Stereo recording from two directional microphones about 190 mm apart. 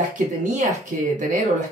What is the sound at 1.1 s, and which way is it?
Speech, 40° right (ahead or behind).